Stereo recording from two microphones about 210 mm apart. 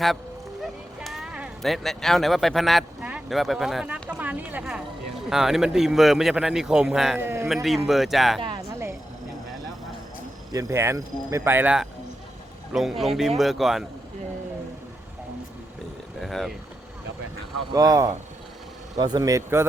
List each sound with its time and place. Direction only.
0.9 s speech: centre (ahead or behind)
7.5 s speech: centre (ahead or behind)
8.4 s a sound: 20° right (ahead or behind)
10.5 s speech: 15° right (ahead or behind)
16.2 s a sound: centre (ahead or behind)
17.7 s speech: 15° right (ahead or behind)